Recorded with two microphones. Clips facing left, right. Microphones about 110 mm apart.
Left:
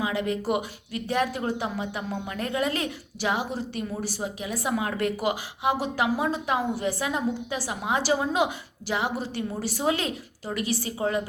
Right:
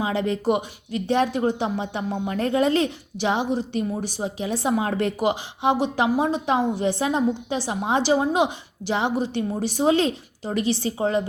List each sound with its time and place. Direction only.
0.0 s speech: 30° right (ahead or behind)